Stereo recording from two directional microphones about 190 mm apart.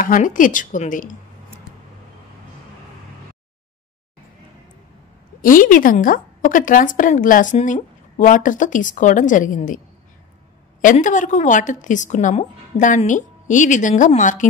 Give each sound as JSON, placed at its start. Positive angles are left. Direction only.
{"t": 0.0, "sound": "a woman's voice", "side_deg": 45}
{"t": 1.7, "sound": "a sound", "side_deg": 15}
{"t": 5.4, "sound": "a woman's voice", "side_deg": 45}
{"t": 10.8, "sound": "a woman's voice", "side_deg": 45}